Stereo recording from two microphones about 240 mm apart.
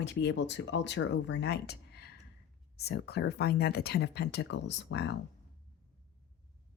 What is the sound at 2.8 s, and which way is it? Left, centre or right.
Speech, left.